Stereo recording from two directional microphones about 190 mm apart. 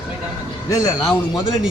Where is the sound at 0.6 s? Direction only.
15° left (ahead or behind).